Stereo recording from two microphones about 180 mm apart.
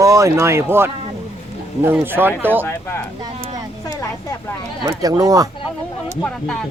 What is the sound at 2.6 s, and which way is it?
Speech, 10° left (ahead or behind).